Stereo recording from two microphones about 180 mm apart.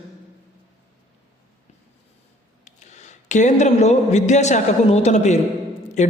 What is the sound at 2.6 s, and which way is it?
A woman's voice, 40° left (ahead or behind).